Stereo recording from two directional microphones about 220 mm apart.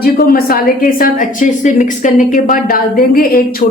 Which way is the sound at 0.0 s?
40° left (ahead or behind).